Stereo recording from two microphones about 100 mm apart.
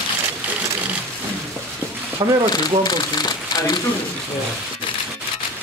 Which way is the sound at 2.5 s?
40° left (ahead or behind).